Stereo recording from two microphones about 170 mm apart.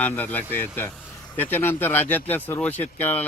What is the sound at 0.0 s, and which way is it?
A man's voice, 10° left (ahead or behind).